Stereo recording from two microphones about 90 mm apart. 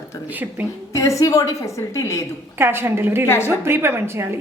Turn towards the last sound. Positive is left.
turn(degrees=-25)  # may be behind; listen again after turning